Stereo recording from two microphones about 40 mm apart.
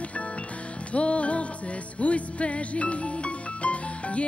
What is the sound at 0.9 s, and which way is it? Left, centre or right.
Music, left.